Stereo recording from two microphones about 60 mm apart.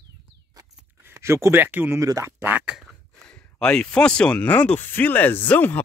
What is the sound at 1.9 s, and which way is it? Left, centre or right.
Speech, right.